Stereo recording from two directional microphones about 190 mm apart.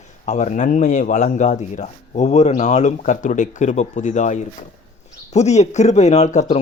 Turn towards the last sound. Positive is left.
turn(degrees=35)  # may be behind; listen again after turning